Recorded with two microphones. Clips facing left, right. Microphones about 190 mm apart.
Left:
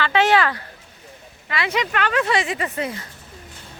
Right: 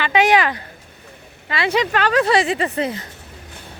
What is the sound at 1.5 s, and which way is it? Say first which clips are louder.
Speech: right 4 dB; 30° right (ahead or behind).